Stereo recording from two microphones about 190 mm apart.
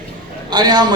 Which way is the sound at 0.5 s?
20° right (ahead or behind).